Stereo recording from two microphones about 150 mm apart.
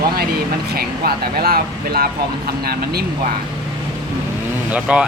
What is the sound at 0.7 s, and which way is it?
Speech, 90° right.